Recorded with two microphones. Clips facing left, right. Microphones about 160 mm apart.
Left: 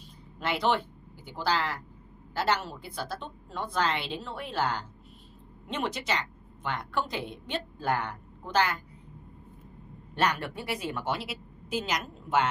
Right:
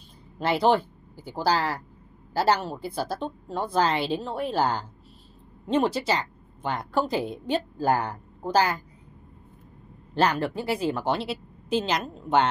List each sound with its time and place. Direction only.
0.4 s a woman's voice: 35° right (ahead or behind)
10.1 s a woman's voice: 30° right (ahead or behind)